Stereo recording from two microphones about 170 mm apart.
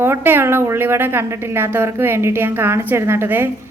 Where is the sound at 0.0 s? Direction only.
15° right (ahead or behind).